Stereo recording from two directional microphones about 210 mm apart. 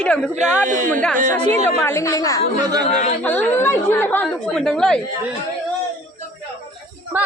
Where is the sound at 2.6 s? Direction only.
20° right (ahead or behind).